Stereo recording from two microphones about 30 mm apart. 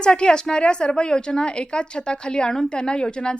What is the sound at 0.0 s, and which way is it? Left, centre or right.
A woman's voice, left.